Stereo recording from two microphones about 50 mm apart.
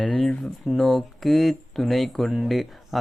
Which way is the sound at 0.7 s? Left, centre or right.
Centre.